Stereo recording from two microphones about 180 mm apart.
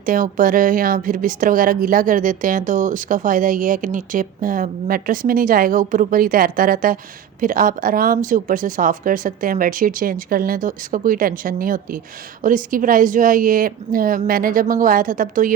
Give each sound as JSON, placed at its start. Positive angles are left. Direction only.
{"t": 0.0, "sound": "a woman's voice", "side_deg": -50}